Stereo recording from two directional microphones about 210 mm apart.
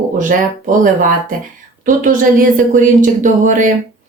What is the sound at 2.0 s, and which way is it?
A woman's voice, 40° right (ahead or behind).